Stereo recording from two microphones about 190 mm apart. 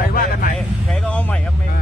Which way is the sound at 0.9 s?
5° left (ahead or behind).